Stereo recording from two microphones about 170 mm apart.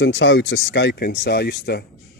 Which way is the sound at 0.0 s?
90° left.